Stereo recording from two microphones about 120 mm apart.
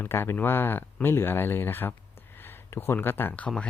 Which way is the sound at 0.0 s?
20° left (ahead or behind).